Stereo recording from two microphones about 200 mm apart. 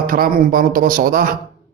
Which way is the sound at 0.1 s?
45° right (ahead or behind).